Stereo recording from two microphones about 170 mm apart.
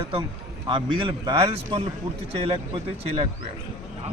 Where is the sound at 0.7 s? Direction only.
30° right (ahead or behind).